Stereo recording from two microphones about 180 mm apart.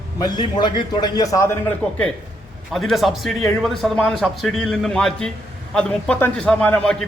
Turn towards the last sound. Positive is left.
turn(degrees=5)  # may be behind; listen again after turning